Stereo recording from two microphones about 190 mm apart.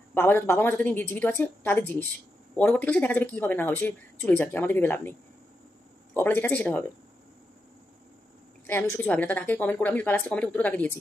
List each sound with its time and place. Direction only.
0.1 s speech: 10° left (ahead or behind)
6.1 s speech: 10° left (ahead or behind)
8.6 s speech: 15° left (ahead or behind)